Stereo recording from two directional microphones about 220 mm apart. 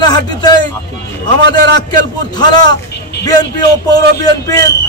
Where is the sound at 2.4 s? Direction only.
20° left (ahead or behind).